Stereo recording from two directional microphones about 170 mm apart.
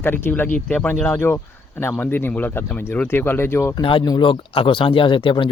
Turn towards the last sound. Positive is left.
turn(degrees=30)  # may be behind; listen again after turning